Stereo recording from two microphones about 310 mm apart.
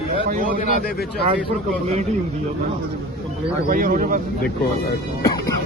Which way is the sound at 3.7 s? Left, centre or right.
Right.